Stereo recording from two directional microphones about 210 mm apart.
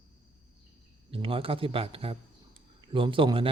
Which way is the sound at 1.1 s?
25° right (ahead or behind).